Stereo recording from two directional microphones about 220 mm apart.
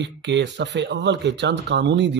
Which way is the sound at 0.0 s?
55° right (ahead or behind).